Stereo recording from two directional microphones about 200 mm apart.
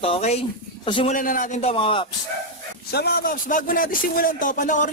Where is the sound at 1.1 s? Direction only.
40° left (ahead or behind); by 2.1 s 25° left (ahead or behind).